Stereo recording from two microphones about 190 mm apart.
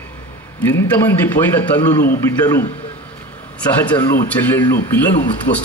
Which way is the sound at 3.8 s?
10° left (ahead or behind).